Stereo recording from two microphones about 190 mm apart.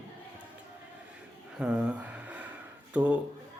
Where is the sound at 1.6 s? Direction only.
5° right (ahead or behind).